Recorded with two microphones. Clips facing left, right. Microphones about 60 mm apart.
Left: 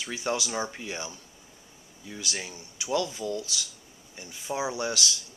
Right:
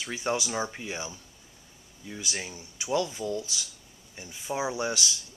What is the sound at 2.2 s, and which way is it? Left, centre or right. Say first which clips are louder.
Speech: even; centre.